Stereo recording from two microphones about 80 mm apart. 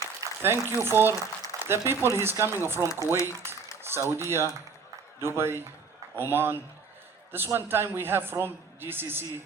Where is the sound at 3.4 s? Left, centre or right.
Right.